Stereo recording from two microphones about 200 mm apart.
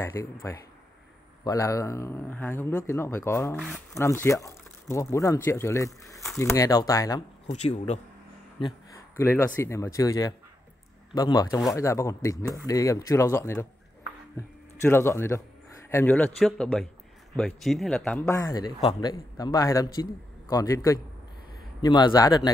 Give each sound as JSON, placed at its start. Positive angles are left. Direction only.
{"t": 0.0, "sound": "a man's voice", "side_deg": 15}
{"t": 3.5, "sound": "speech", "side_deg": 5}
{"t": 3.9, "sound": "a man's voice", "side_deg": 15}
{"t": 7.5, "sound": "a man's voice", "side_deg": 35}
{"t": 9.1, "sound": "a man's voice", "side_deg": 15}
{"t": 18.4, "sound": "a man's voice", "side_deg": 20}